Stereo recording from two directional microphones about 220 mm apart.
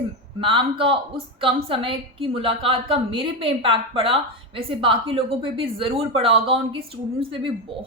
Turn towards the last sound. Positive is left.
turn(degrees=-25)  # may be behind; listen again after turning